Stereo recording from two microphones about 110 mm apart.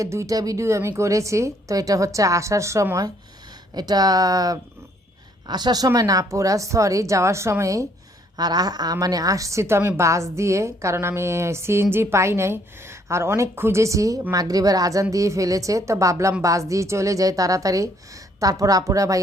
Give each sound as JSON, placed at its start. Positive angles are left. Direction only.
{"t": 0.0, "sound": "a woman's voice", "side_deg": -30}